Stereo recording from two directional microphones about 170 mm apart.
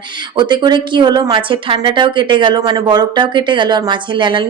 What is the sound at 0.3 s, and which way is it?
A woman's voice, 25° right (ahead or behind).